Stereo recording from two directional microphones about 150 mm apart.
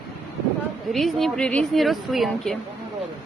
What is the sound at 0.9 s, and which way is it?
Speech, centre (ahead or behind).